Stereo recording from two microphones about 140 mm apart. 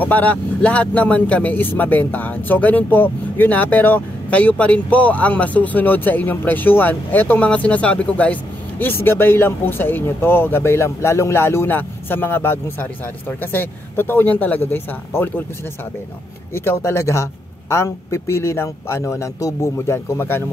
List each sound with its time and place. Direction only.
0.0 s speech: 10° left (ahead or behind)
16.5 s a man's voice: 15° left (ahead or behind)